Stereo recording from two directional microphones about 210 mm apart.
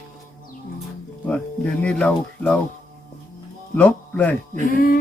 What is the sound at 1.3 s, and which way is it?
Speech, 5° left (ahead or behind).